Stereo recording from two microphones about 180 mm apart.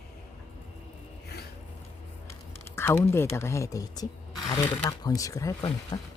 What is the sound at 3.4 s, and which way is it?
Speech, 15° left (ahead or behind).